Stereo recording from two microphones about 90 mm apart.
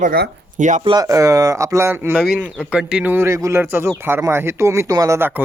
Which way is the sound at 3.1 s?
30° right (ahead or behind).